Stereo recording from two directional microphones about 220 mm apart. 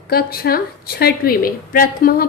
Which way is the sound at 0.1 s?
45° left (ahead or behind).